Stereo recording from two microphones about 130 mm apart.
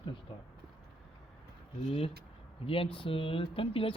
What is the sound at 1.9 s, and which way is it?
Speech, 45° left (ahead or behind).